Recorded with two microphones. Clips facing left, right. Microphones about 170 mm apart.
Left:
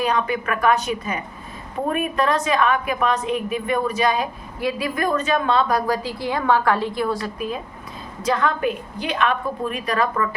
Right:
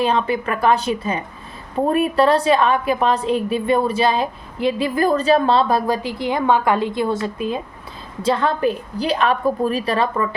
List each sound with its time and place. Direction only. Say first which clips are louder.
0.0 s a woman's voice: right 3 dB; 30° right (ahead or behind)